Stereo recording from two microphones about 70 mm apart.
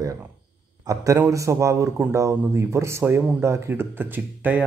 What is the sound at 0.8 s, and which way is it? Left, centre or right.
A man's voice, right.